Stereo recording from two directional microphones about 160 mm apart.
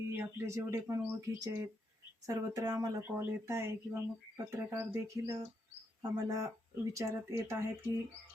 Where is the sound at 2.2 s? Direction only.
20° right (ahead or behind).